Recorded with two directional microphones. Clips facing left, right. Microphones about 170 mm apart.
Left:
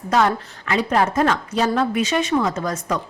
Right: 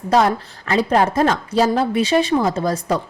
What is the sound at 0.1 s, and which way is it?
Speech, 35° right (ahead or behind).